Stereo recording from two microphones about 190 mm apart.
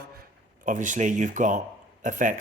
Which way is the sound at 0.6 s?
40° right (ahead or behind).